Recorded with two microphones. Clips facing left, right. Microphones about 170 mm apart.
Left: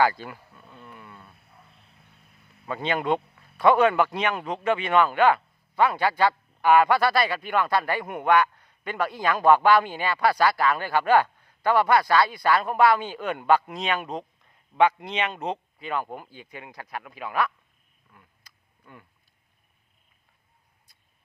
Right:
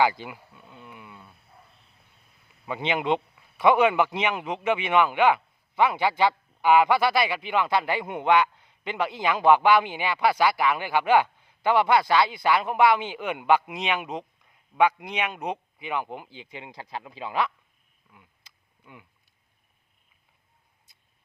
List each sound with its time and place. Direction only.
0.0 s a sound: 15° right (ahead or behind)
2.6 s a man's voice: 15° right (ahead or behind)
14.1 s a man's voice: 5° right (ahead or behind); by 17.5 s 25° right (ahead or behind)